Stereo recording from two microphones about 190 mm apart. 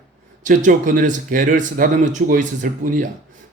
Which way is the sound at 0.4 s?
45° right (ahead or behind).